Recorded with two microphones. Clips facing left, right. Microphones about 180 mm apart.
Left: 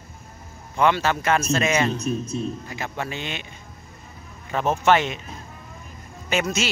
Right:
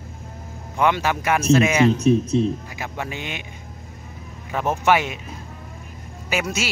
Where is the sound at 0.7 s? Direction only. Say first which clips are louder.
Even; 15° right (ahead or behind).